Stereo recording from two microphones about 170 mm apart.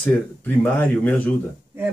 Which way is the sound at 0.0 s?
10° left (ahead or behind).